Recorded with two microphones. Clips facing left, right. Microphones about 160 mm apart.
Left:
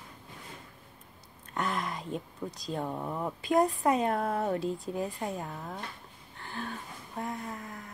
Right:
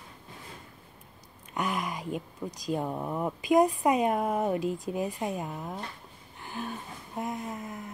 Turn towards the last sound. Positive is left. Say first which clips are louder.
# right 3 dB
turn(degrees=-20)  # may be behind; listen again after turning